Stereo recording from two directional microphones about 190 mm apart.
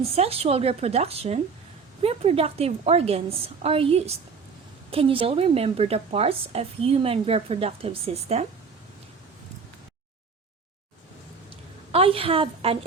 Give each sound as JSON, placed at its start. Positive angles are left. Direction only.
{"t": 0.0, "sound": "a woman's voice", "side_deg": -30}
{"t": 11.9, "sound": "a woman's voice", "side_deg": -30}